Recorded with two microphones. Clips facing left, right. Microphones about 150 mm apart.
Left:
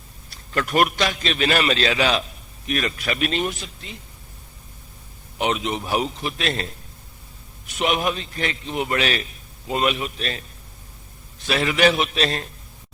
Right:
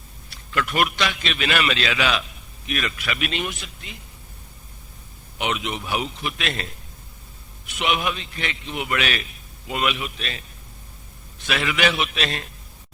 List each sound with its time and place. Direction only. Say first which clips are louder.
0.3 s a man's voice: left 1 dB; 40° left (ahead or behind)
5.4 s a man's voice: left 3 dB; 35° left (ahead or behind)
7.8 s a man's voice: left 2 dB; 40° left (ahead or behind)
11.4 s a man's voice: left 4 dB; 35° left (ahead or behind)